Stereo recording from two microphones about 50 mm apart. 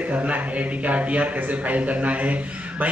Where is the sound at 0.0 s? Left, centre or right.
Right.